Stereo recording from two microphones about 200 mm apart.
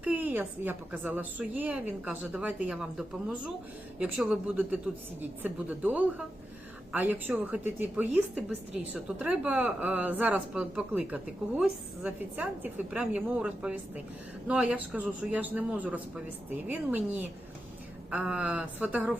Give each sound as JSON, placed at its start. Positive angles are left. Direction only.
{"t": 0.0, "sound": "a woman's voice", "side_deg": -10}
{"t": 3.9, "sound": "a woman's voice", "side_deg": -5}
{"t": 18.1, "sound": "a woman's voice", "side_deg": -5}